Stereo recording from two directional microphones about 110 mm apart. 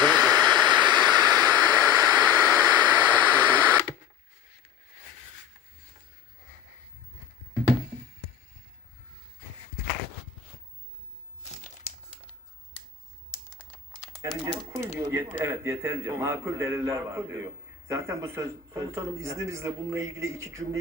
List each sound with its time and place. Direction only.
0.0 s a sound: 40° right (ahead or behind)
14.2 s typewriter: 30° right (ahead or behind)
14.9 s a man's voice: 20° right (ahead or behind)